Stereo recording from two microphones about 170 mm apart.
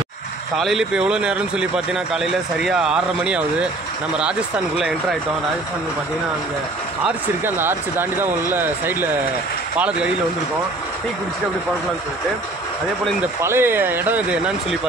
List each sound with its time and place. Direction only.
0.6 s speech: centre (ahead or behind)
7.4 s speech: 10° right (ahead or behind)
13.4 s speech: 15° right (ahead or behind)